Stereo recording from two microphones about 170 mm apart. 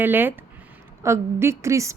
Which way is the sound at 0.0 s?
10° right (ahead or behind).